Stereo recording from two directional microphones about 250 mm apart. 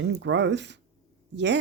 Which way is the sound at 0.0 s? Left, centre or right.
Right.